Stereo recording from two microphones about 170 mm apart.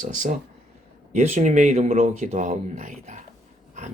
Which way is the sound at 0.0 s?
50° right (ahead or behind).